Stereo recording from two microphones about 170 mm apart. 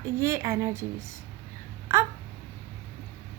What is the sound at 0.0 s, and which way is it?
A woman's voice, 15° right (ahead or behind).